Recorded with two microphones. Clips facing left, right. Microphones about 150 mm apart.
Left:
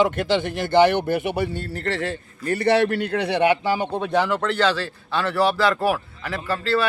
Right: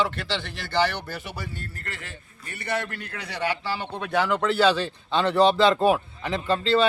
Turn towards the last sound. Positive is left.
turn(degrees=-20)  # may be behind; listen again after turning